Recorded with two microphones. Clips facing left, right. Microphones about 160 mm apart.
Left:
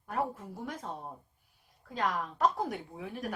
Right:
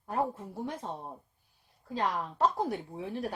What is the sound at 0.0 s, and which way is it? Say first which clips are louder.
Speech: right 2 dB; 25° right (ahead or behind).